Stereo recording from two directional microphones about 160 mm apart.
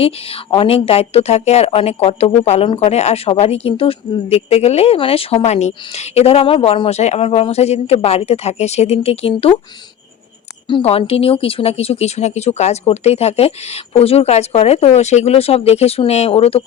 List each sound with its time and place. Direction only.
0.0 s a woman's voice: 35° left (ahead or behind)
10.7 s a woman's voice: 35° left (ahead or behind)